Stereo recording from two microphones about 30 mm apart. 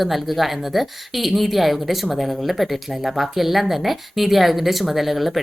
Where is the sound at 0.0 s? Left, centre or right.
Centre.